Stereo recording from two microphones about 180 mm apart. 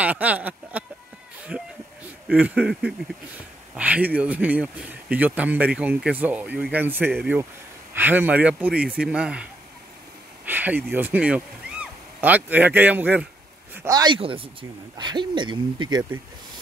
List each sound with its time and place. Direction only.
0.0 s speech: 10° right (ahead or behind)
2.2 s a sound: 5° right (ahead or behind)
3.7 s speech: 10° right (ahead or behind)
9.0 s a sound: 5° right (ahead or behind)
10.9 s speech: 10° right (ahead or behind)
13.8 s speech: 25° right (ahead or behind)